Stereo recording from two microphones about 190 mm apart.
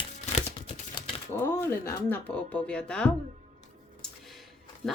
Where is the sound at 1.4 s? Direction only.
10° left (ahead or behind).